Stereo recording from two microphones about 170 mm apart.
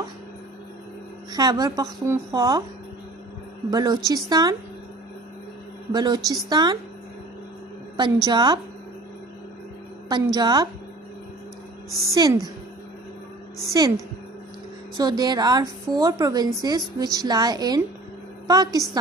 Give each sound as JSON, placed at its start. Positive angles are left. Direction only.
{"t": 1.3, "sound": "a woman's voice", "side_deg": -20}
{"t": 3.7, "sound": "a woman's voice", "side_deg": -25}
{"t": 5.9, "sound": "a woman's voice", "side_deg": -25}
{"t": 8.3, "sound": "a woman's voice", "side_deg": -25}
{"t": 10.0, "sound": "a woman's voice", "side_deg": -25}
{"t": 12.1, "sound": "a woman's voice", "side_deg": -20}
{"t": 13.7, "sound": "a woman's voice", "side_deg": -25}
{"t": 15.0, "sound": "a woman's voice", "side_deg": -25}